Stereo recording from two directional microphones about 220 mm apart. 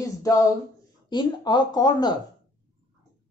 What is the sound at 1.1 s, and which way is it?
Speech, 20° left (ahead or behind).